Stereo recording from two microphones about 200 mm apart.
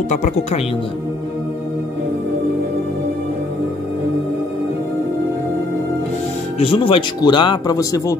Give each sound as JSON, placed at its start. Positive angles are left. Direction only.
{"t": 0.1, "sound": "speech", "side_deg": 35}
{"t": 6.6, "sound": "speech", "side_deg": 30}